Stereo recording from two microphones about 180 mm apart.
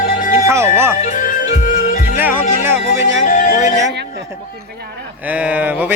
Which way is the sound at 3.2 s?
50° left (ahead or behind).